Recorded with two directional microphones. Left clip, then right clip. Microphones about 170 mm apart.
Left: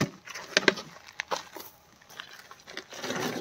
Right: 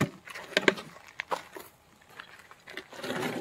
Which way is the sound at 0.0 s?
5° left (ahead or behind).